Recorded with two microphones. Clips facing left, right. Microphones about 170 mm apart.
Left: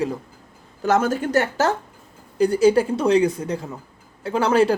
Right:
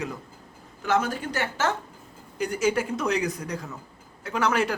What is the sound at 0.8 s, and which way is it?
A woman's voice, 45° left (ahead or behind).